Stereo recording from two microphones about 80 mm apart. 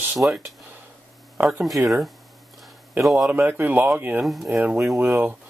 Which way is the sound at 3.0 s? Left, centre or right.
Centre.